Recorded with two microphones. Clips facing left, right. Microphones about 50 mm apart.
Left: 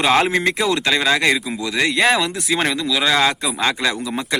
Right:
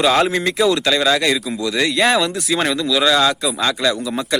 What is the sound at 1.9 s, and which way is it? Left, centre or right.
Speech, centre.